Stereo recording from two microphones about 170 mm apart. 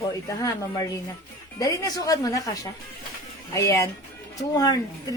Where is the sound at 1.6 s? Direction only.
20° left (ahead or behind).